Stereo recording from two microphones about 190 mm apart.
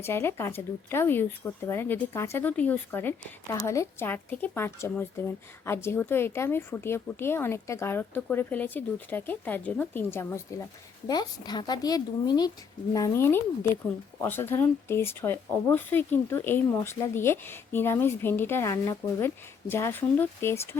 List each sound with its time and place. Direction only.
0.0 s speech: 10° left (ahead or behind)